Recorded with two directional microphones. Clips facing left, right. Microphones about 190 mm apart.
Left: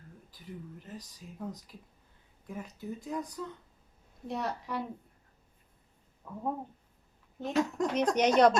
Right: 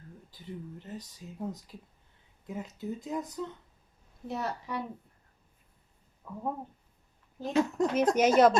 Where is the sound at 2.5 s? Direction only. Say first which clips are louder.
Right 3 dB; 20° right (ahead or behind).